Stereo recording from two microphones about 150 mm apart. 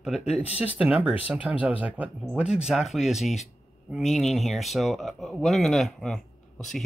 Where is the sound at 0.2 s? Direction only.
45° left (ahead or behind).